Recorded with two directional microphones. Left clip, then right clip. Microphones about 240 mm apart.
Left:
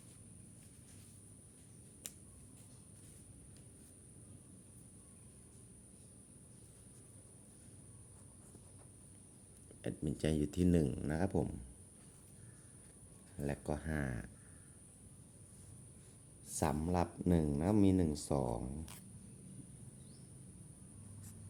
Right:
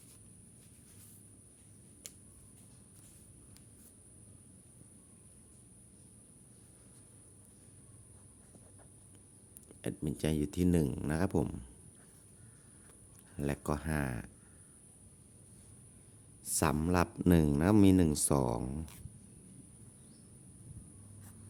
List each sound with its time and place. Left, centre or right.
9.8 s speech: centre
13.4 s speech: right
16.5 s speech: right